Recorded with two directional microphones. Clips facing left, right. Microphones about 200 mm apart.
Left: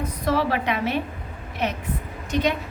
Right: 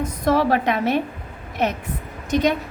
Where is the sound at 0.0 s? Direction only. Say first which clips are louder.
Right 4 dB; 50° right (ahead or behind).